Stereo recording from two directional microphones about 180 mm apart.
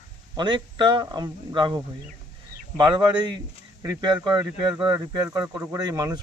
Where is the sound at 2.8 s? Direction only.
25° right (ahead or behind).